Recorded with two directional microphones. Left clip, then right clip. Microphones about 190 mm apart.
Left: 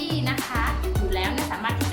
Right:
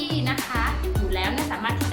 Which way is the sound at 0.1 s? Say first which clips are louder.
Right 1 dB; 5° right (ahead or behind).